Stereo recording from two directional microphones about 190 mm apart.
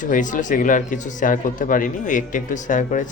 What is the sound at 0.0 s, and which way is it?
Speech, 40° left (ahead or behind).